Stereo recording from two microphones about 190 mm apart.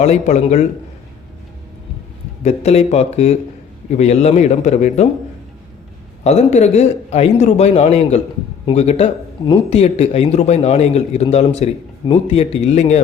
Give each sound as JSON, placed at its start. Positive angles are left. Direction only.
{"t": 0.0, "sound": "speech", "side_deg": 35}
{"t": 2.4, "sound": "speech", "side_deg": 35}
{"t": 6.2, "sound": "speech", "side_deg": 35}